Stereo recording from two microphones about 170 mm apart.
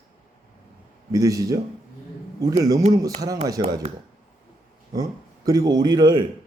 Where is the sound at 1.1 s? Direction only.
20° right (ahead or behind).